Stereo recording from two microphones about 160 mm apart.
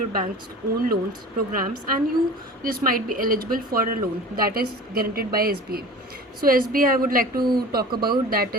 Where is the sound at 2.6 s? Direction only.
60° right (ahead or behind).